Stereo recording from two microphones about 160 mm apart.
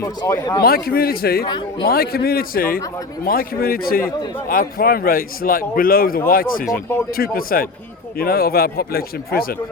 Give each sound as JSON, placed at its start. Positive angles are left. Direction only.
{"t": 0.0, "sound": "speech", "side_deg": 20}
{"t": 0.6, "sound": "a man's voice", "side_deg": 70}
{"t": 1.5, "sound": "speech", "side_deg": 30}
{"t": 1.9, "sound": "a man's voice", "side_deg": 70}